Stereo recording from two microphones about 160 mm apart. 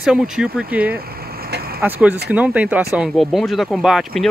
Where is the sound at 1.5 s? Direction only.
70° right (ahead or behind).